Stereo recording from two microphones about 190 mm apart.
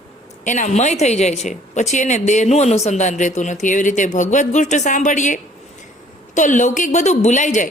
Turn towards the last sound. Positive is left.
turn(degrees=40)  # may be behind; listen again after turning